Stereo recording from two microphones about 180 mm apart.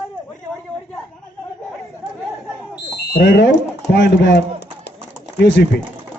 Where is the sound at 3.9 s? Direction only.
75° left (ahead or behind).